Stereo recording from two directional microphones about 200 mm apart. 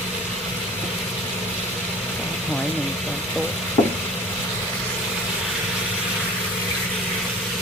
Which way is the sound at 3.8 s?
25° left (ahead or behind).